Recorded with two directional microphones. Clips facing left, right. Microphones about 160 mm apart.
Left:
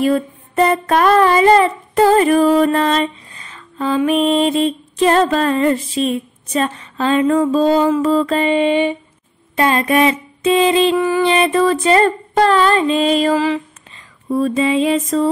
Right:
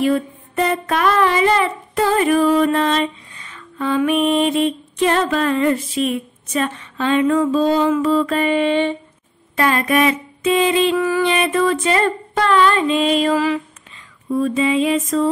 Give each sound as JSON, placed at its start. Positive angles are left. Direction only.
{"t": 0.0, "sound": "child singing", "side_deg": 35}
{"t": 8.4, "sound": "mantra", "side_deg": 20}
{"t": 9.6, "sound": "child singing", "side_deg": 25}